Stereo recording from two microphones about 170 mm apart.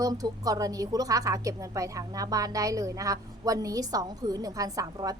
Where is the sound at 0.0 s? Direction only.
20° right (ahead or behind).